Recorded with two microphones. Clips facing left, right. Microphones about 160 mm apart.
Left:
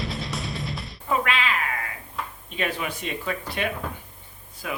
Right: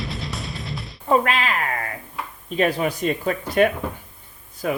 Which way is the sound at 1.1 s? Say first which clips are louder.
Right 5 dB; 40° right (ahead or behind).